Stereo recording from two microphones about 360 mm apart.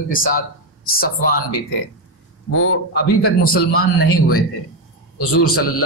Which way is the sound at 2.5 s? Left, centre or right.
Left.